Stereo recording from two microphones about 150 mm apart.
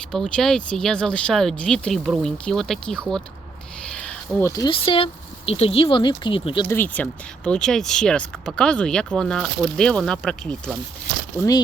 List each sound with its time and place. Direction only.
0.1 s speech: 5° left (ahead or behind)
3.8 s a sound: 5° left (ahead or behind)
4.4 s speech: 25° left (ahead or behind)
4.7 s speech: 35° left (ahead or behind)
6.7 s speech: 10° left (ahead or behind)